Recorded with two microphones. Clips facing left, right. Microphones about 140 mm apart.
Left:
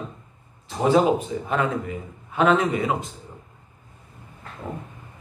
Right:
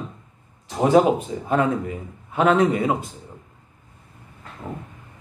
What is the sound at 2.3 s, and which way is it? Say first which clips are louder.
Speech: right 2 dB; 35° right (ahead or behind).